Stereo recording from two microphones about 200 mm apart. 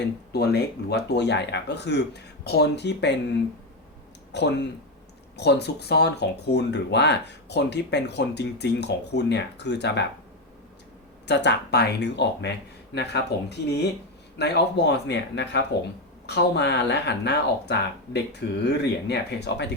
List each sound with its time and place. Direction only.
0.3 s speech: 55° left (ahead or behind)
4.3 s speech: 60° left (ahead or behind)
11.3 s speech: 60° left (ahead or behind)